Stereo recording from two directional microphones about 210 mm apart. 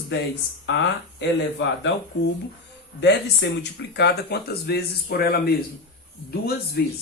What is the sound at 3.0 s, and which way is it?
Speech, 55° left (ahead or behind).